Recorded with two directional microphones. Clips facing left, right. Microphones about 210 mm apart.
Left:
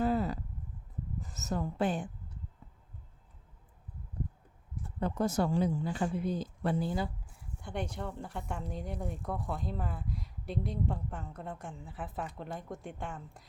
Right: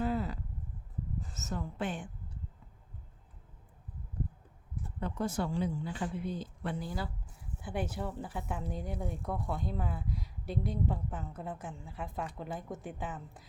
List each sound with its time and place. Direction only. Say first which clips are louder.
0.0 s a sound: left 3 dB; 40° left (ahead or behind)
1.4 s speech: left 5 dB; 35° left (ahead or behind)
4.9 s speech: left 4 dB; 40° left (ahead or behind)
6.7 s speech: left 6 dB; 25° left (ahead or behind)
7.6 s speech: right 1 dB; 5° right (ahead or behind)